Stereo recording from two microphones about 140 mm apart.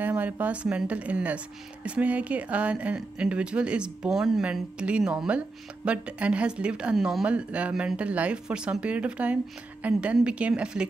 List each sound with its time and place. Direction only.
0.0 s speech: 10° right (ahead or behind)